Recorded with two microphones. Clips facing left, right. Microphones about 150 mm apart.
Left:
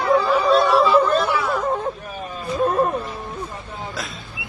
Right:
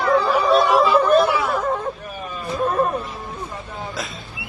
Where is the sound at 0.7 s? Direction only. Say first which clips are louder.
Even; centre (ahead or behind).